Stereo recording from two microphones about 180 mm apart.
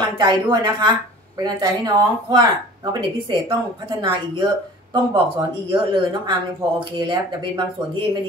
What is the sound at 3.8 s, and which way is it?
Speech, 25° right (ahead or behind).